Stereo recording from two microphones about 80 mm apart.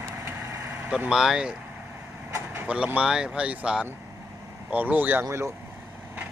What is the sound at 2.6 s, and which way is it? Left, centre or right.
Speech, centre.